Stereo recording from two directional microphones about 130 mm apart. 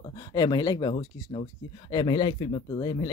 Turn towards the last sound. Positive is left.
turn(degrees=30)  # may be behind; listen again after turning